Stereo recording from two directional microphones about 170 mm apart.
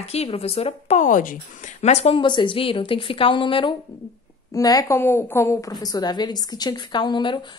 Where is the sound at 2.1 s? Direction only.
25° left (ahead or behind).